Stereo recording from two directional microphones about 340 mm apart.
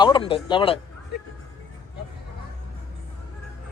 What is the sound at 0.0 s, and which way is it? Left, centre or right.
Speech, centre.